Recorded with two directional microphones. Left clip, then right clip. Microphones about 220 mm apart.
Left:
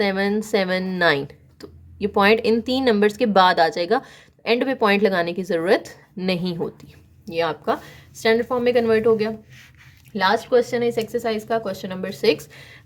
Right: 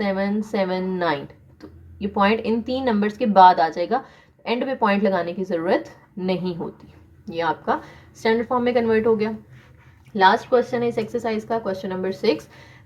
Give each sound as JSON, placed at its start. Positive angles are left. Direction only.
{"t": 0.0, "sound": "speech", "side_deg": 40}